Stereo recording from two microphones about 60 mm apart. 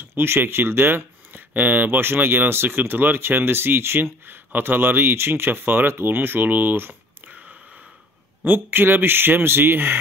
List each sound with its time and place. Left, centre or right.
0.0 s speech: right
8.5 s speech: right